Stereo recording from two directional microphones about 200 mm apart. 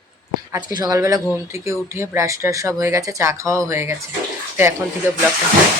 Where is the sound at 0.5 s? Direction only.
20° right (ahead or behind).